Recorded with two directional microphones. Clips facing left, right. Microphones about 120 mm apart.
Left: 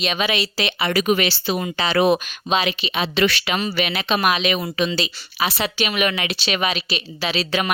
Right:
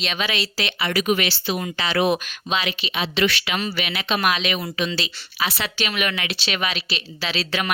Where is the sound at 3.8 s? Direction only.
35° left (ahead or behind).